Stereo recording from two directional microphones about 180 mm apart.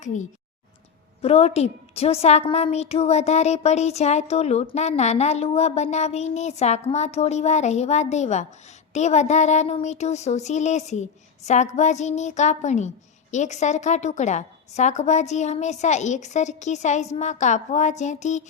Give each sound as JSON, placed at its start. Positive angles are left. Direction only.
{"t": 0.0, "sound": "a woman's voice", "side_deg": 45}